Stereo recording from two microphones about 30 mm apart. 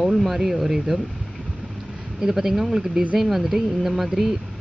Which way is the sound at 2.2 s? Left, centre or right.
Centre.